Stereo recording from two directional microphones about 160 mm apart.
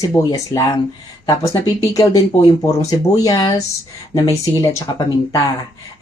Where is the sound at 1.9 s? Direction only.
20° left (ahead or behind).